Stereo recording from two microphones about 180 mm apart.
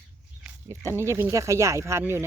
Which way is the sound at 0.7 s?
15° right (ahead or behind).